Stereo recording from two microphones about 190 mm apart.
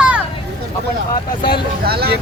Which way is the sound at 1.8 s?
55° right (ahead or behind).